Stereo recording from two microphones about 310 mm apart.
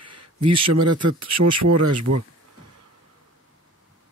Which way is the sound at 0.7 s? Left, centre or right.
Right.